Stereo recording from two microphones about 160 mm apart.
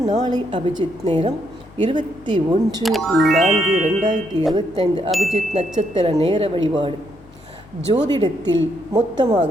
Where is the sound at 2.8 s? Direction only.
Centre (ahead or behind).